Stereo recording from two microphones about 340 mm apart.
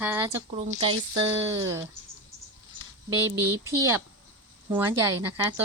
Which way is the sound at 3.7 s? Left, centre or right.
Centre.